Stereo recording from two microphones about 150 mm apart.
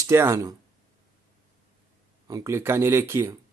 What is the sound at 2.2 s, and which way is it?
Speech, 20° right (ahead or behind).